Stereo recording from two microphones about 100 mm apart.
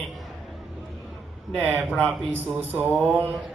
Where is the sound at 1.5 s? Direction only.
15° right (ahead or behind).